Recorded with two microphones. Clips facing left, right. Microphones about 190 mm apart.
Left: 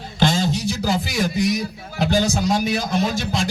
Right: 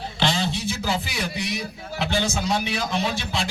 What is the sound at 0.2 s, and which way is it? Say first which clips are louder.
A man's voice: left 5 dB; 45° left (ahead or behind).